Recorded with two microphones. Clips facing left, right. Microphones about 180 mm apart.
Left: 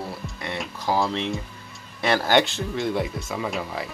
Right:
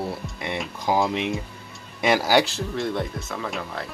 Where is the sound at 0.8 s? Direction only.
15° right (ahead or behind).